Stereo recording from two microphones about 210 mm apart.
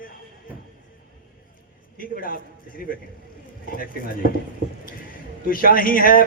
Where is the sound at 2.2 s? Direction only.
45° left (ahead or behind).